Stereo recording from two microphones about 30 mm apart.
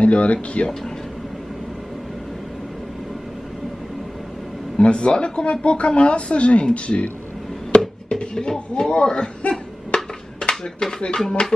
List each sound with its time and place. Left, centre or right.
0.0 s speech: left
4.8 s speech: left
7.7 s music: left
8.1 s speech: left
9.4 s a sound: left
10.4 s a sound: left
11.0 s speech: left